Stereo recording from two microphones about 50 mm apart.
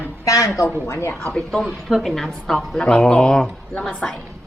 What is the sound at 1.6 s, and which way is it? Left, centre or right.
A woman's voice, centre.